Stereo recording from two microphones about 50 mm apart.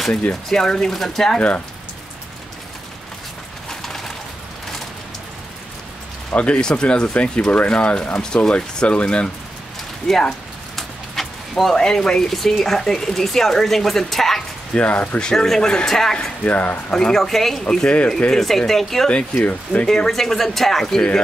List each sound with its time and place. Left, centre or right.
0.3 s speech: centre
6.3 s speech: left
10.0 s speech: centre
10.8 s a sound: centre
11.7 s speech: centre
14.7 s speech: left; by 16.3 s centre
16.4 s speech: left
16.9 s speech: centre
17.8 s speech: left
18.3 s speech: centre
19.0 s speech: left
19.9 s speech: centre